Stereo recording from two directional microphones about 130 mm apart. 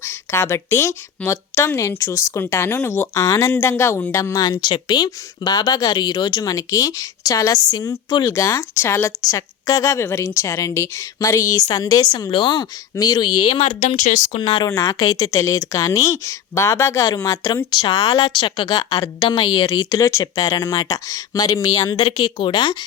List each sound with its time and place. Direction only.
0.0 s speech: 20° left (ahead or behind); by 13.6 s 35° left (ahead or behind)
13.6 s speech: 60° left (ahead or behind)
14.3 s a woman's voice: 40° left (ahead or behind)
14.7 s a woman's voice: 30° left (ahead or behind)